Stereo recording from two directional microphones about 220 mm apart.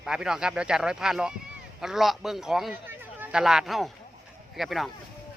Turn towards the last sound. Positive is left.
turn(degrees=0)  # may be behind; listen again after turning